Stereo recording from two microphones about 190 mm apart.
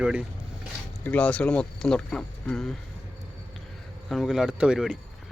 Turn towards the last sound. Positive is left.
turn(degrees=-5)  # may be behind; listen again after turning